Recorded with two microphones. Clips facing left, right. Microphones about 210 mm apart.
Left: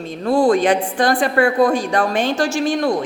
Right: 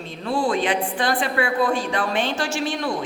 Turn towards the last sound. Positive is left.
turn(degrees=45)  # may be behind; listen again after turning